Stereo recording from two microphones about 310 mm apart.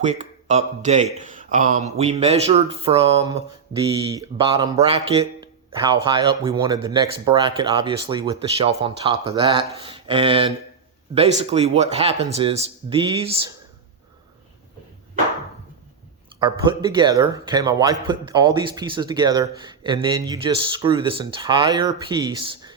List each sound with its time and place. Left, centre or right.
0.0 s a man's voice: right
16.4 s speech: centre